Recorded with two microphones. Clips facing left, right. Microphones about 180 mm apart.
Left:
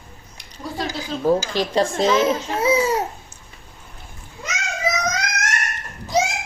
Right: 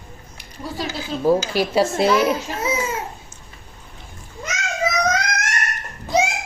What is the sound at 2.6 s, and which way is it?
Babbling, 35° left (ahead or behind).